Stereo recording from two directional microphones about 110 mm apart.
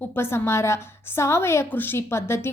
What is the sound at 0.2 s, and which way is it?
A woman's voice, 20° left (ahead or behind).